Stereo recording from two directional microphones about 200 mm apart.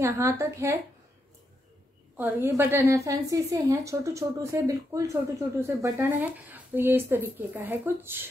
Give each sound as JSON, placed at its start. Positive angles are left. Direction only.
{"t": 0.0, "sound": "a woman's voice", "side_deg": -15}
{"t": 2.1, "sound": "a woman's voice", "side_deg": -10}